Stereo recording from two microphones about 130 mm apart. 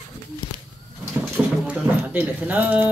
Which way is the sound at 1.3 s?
15° right (ahead or behind).